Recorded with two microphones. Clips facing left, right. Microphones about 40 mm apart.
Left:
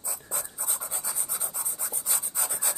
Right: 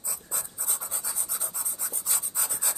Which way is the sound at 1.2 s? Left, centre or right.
Centre.